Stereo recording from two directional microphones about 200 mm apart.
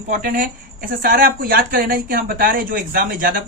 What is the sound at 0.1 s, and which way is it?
Speech, 45° right (ahead or behind).